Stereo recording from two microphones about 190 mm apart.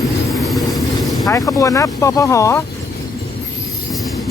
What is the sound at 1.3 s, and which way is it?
Speech, 15° left (ahead or behind).